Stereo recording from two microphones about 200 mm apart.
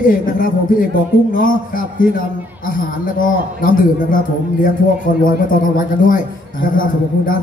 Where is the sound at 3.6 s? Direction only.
45° left (ahead or behind).